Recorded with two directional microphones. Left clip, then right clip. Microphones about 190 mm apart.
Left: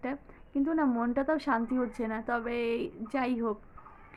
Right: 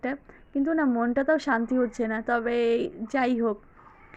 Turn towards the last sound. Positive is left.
turn(degrees=-20)  # may be behind; listen again after turning